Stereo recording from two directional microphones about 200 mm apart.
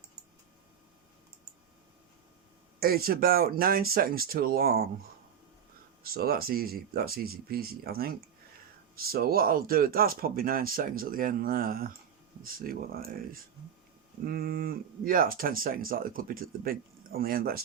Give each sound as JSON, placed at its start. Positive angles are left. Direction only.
{"t": 2.8, "sound": "speech", "side_deg": -50}
{"t": 6.0, "sound": "speech", "side_deg": -50}
{"t": 14.3, "sound": "speech", "side_deg": -50}